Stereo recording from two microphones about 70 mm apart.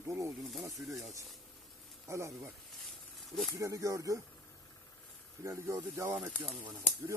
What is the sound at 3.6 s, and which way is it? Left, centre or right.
Speech, right.